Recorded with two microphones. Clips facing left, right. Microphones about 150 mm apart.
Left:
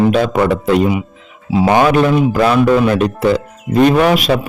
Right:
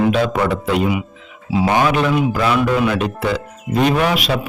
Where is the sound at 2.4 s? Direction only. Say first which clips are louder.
Left 7 dB; 40° left (ahead or behind).